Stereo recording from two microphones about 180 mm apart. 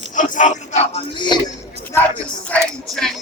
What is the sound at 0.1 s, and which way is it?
Music, 45° left (ahead or behind).